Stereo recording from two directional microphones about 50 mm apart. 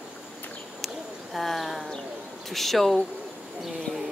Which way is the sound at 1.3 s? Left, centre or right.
Centre.